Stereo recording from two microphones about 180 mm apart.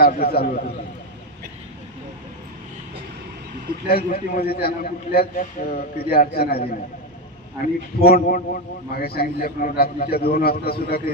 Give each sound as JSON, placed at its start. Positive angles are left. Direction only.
{"t": 0.0, "sound": "a man's voice", "side_deg": 60}
{"t": 3.9, "sound": "a man's voice", "side_deg": 55}